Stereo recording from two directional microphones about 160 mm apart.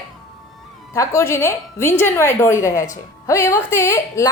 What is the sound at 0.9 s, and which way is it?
A woman's voice, 20° left (ahead or behind).